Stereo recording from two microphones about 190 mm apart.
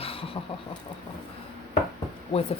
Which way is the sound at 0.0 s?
30° left (ahead or behind).